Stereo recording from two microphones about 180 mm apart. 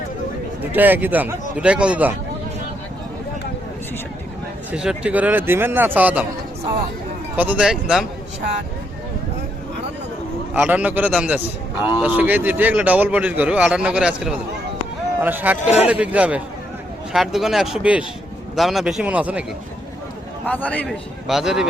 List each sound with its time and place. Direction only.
0.7 s a man's voice: 10° right (ahead or behind)
4.7 s a man's voice: 5° right (ahead or behind)
7.3 s speech: 10° right (ahead or behind)
10.5 s a man's voice: 5° right (ahead or behind)
15.6 s speech: 40° left (ahead or behind)
15.9 s a man's voice: 5° right (ahead or behind)
20.5 s a man's voice: 10° left (ahead or behind)
21.2 s speech: centre (ahead or behind)